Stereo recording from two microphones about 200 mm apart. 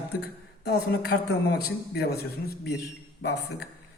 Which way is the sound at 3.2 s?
55° left (ahead or behind).